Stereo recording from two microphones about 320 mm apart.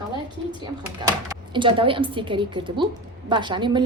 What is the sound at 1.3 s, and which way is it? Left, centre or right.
A woman's voice, centre.